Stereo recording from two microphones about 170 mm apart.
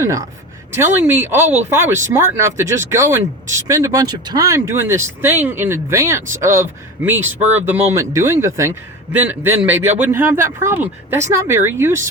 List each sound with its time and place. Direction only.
0.0 s a woman's voice: 20° right (ahead or behind)